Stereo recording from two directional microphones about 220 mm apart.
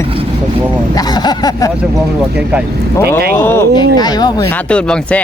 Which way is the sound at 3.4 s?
15° left (ahead or behind).